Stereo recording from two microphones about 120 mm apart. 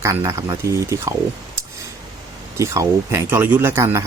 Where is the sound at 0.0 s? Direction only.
25° right (ahead or behind).